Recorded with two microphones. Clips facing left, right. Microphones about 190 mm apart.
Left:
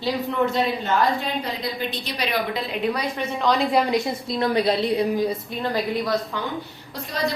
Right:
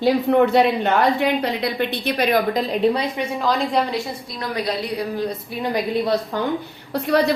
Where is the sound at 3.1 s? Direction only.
15° right (ahead or behind).